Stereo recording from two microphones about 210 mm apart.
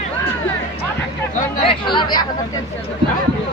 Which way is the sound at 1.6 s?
20° left (ahead or behind).